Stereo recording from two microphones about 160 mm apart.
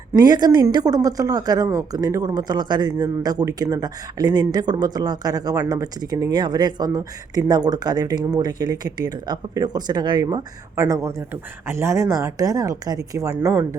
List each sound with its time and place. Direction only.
0.2 s a woman's voice: 25° right (ahead or behind)